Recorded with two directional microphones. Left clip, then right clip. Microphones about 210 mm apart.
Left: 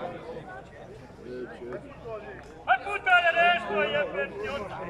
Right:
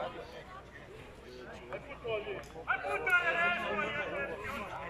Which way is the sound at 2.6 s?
50° left (ahead or behind).